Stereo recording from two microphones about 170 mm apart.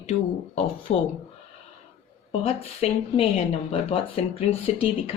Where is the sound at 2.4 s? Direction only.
35° left (ahead or behind).